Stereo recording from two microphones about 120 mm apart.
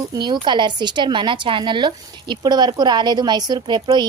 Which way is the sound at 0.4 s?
40° right (ahead or behind).